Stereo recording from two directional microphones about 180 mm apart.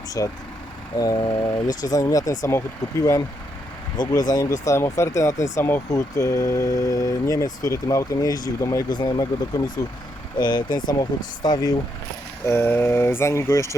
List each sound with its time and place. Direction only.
0.2 s speech: 20° left (ahead or behind)